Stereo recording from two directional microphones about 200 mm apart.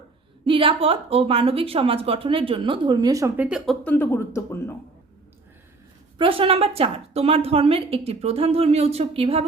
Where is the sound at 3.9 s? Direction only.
10° left (ahead or behind).